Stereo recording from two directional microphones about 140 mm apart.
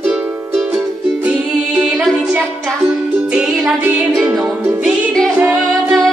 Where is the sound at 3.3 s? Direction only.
5° right (ahead or behind).